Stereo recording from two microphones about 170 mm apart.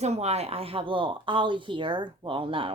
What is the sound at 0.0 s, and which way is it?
Speech, 40° right (ahead or behind).